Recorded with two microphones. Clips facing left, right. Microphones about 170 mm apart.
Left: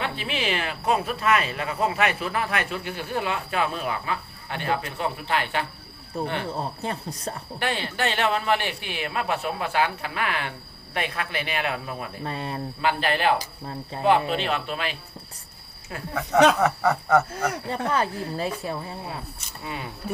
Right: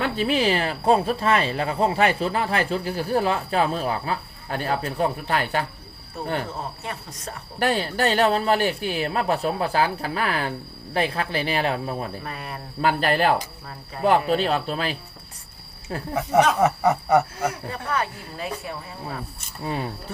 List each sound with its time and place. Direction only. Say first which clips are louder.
0.0 s speech: right 7 dB; 40° right (ahead or behind)
6.6 s speech: left 3 dB; 35° left (ahead or behind)
7.6 s speech: right 5 dB; 40° right (ahead or behind)
12.2 s speech: left 3 dB; 30° left (ahead or behind)
12.8 s speech: right 3 dB; 45° right (ahead or behind)
16.6 s snicker: right 2 dB; 20° right (ahead or behind)
17.7 s speech: left 2 dB; 30° left (ahead or behind)
19.6 s speech: right 6 dB; 35° right (ahead or behind)